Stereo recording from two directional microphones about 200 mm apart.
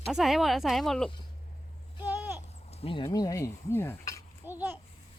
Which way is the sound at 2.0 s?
10° right (ahead or behind).